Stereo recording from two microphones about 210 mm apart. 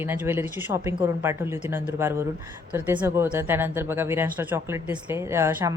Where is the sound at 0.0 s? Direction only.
10° right (ahead or behind).